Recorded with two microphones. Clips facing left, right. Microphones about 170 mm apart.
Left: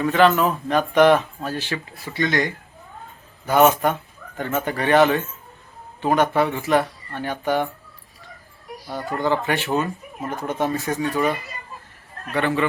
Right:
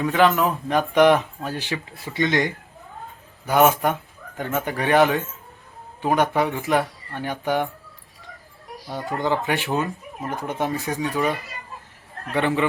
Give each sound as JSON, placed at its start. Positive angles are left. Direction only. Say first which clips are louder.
{"t": 0.0, "sound": "speech", "louder": "left 2 dB", "side_deg": -10}
{"t": 9.1, "sound": "speech", "louder": "left 1 dB", "side_deg": -15}
{"t": 12.3, "sound": "speech", "louder": "even", "side_deg": -15}